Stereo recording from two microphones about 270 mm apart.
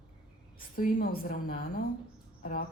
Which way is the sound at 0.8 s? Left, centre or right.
Left.